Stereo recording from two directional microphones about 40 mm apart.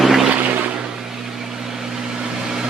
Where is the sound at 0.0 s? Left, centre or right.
Centre.